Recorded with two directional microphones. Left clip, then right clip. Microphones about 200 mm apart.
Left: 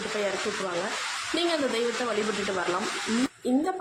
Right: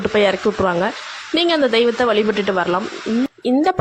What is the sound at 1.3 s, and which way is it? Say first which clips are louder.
A woman's voice: right 12 dB; 40° right (ahead or behind).